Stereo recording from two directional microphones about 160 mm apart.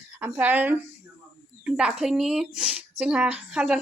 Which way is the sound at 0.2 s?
10° right (ahead or behind).